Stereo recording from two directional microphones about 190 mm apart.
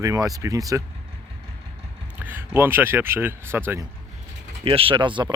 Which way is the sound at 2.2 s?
10° right (ahead or behind).